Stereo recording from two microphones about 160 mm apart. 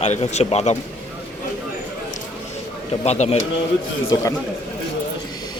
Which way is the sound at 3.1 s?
45° left (ahead or behind).